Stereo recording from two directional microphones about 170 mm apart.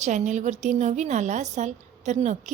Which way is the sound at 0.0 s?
45° right (ahead or behind).